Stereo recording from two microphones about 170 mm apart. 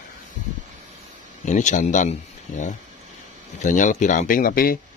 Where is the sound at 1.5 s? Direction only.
45° left (ahead or behind).